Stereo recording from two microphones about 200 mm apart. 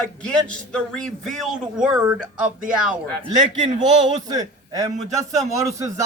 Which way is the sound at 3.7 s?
20° right (ahead or behind).